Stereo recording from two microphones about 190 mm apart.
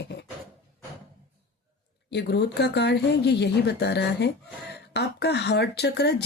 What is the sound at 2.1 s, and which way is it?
Speech, 65° left (ahead or behind).